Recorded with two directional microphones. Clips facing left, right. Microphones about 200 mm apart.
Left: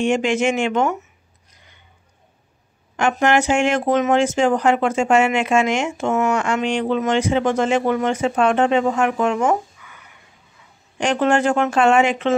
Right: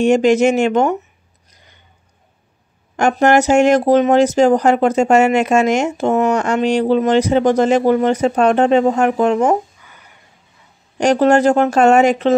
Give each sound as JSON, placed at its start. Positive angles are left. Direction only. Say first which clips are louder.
{"t": 0.0, "sound": "speech", "louder": "right 6 dB", "side_deg": -40}
{"t": 1.5, "sound": "a sound", "louder": "right 3 dB", "side_deg": -40}
{"t": 3.0, "sound": "speech", "louder": "right 5 dB", "side_deg": -40}
{"t": 11.0, "sound": "speech", "louder": "right 6 dB", "side_deg": -40}